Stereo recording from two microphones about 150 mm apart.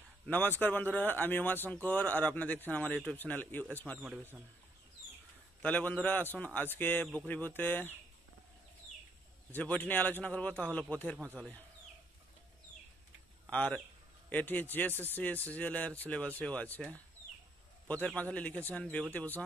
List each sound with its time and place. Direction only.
0.3 s a man's voice: 10° left (ahead or behind)
5.6 s a man's voice: 10° left (ahead or behind)
9.5 s a man's voice: 10° left (ahead or behind)
13.5 s a man's voice: 10° left (ahead or behind)